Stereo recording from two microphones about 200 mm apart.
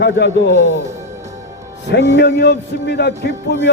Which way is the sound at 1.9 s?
60° left (ahead or behind).